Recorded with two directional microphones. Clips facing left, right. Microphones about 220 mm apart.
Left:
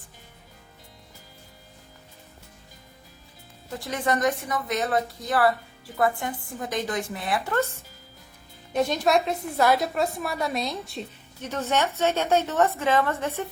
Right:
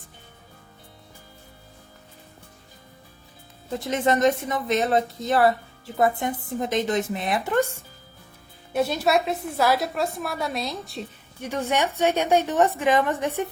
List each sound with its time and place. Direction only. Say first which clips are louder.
3.7 s a woman's voice: right 4 dB; 20° right (ahead or behind); by 11.0 s centre (ahead or behind)
11.3 s a woman's voice: right 1 dB; 10° right (ahead or behind)